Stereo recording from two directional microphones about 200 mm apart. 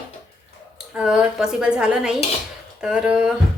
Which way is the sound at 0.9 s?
5° right (ahead or behind).